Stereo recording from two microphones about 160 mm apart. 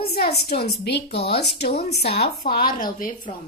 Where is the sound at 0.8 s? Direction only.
90° left.